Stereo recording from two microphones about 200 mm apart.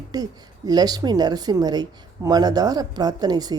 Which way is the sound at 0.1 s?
20° right (ahead or behind).